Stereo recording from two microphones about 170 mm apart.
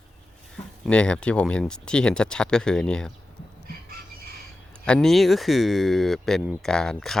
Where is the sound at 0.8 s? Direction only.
5° left (ahead or behind).